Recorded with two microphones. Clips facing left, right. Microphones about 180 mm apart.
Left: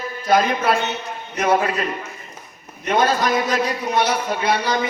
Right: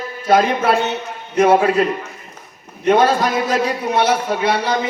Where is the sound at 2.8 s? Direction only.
30° right (ahead or behind).